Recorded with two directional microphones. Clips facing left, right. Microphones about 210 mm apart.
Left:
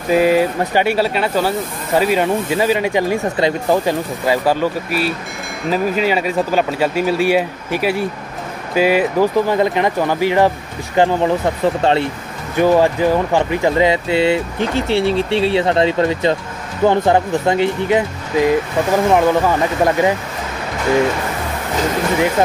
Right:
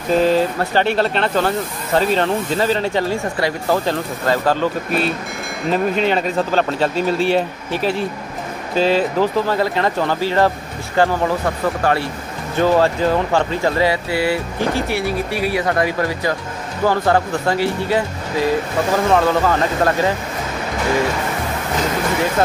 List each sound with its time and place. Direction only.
0.1 s speech: 10° left (ahead or behind)